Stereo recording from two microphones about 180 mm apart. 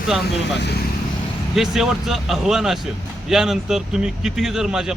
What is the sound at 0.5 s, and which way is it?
Speech, 65° left (ahead or behind).